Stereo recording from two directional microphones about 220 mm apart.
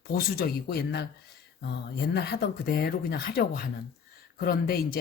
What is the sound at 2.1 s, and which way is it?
Speech, 50° left (ahead or behind).